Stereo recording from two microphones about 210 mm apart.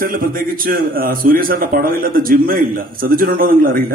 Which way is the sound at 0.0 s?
45° right (ahead or behind).